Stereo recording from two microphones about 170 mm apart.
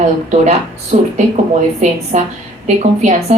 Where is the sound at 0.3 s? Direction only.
45° right (ahead or behind).